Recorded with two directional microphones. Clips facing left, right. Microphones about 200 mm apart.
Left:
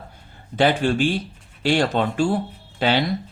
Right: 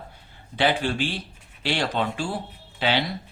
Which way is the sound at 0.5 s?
45° left (ahead or behind).